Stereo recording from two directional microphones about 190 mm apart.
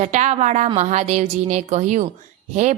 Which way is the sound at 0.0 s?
35° right (ahead or behind).